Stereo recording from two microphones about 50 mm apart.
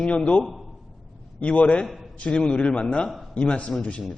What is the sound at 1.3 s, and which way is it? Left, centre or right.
Speech, left.